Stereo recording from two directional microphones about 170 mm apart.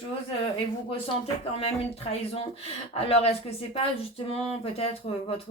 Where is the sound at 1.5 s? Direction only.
35° left (ahead or behind).